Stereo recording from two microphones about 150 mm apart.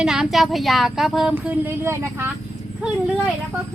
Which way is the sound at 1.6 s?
15° right (ahead or behind).